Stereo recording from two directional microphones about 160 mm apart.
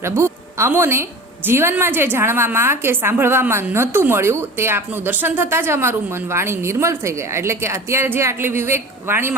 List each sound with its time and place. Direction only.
0.0 s a woman's voice: 15° right (ahead or behind)